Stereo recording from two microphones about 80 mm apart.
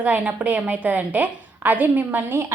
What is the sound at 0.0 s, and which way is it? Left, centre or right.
A woman's voice, centre.